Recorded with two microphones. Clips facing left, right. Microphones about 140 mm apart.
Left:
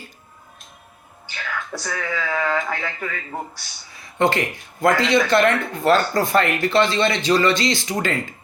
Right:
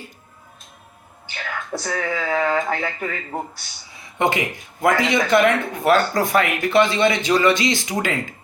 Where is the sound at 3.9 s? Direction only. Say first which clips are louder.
Left 1 dB; 15° right (ahead or behind).